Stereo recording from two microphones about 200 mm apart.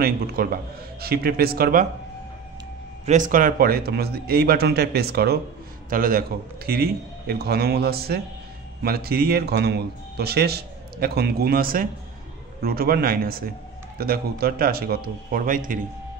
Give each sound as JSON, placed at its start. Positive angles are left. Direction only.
{"t": 0.0, "sound": "a man's voice", "side_deg": -50}
{"t": 3.1, "sound": "a man's voice", "side_deg": -40}